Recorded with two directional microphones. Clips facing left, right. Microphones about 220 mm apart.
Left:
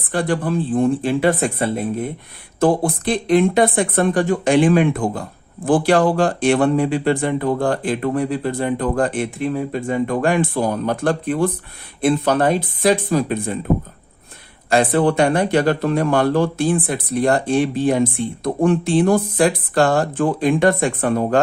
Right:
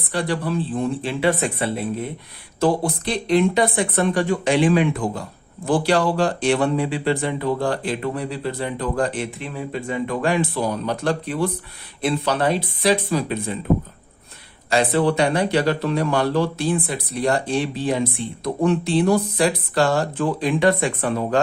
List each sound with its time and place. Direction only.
0.1 s speech: 50° left (ahead or behind)
14.7 s speech: 50° left (ahead or behind)